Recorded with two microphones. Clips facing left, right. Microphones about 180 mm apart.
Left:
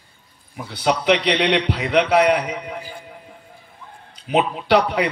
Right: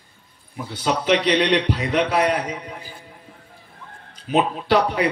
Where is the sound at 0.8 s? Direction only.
80° left.